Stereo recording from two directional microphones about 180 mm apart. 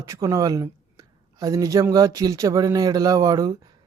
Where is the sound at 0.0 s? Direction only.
20° right (ahead or behind).